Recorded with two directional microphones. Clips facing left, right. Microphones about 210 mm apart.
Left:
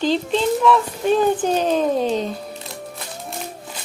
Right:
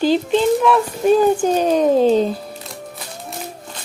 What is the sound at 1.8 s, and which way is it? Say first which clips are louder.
Speech: right 6 dB; 30° right (ahead or behind).